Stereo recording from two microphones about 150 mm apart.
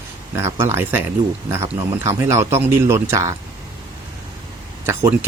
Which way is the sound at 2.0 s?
20° right (ahead or behind).